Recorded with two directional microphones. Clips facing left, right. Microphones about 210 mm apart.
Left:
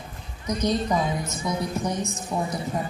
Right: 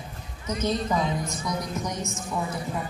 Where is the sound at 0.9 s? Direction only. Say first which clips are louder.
Left 1 dB; 25° left (ahead or behind).